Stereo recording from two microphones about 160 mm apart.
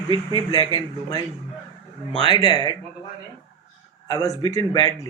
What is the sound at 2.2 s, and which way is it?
Speech, 30° left (ahead or behind).